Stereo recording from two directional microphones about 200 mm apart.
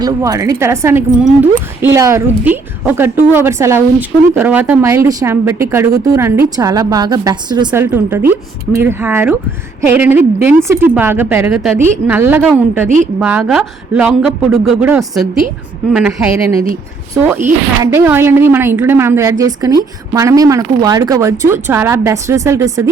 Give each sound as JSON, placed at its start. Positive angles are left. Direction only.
{"t": 0.0, "sound": "a woman's voice", "side_deg": -15}